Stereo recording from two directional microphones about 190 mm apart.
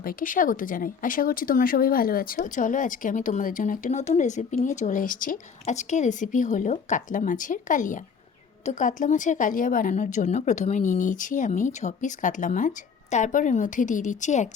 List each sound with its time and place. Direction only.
0.0 s a woman's voice: 50° left (ahead or behind)